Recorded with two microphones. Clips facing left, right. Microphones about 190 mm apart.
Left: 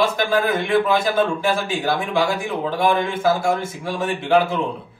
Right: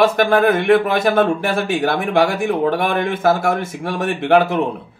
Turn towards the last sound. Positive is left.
turn(degrees=-60)  # may be behind; listen again after turning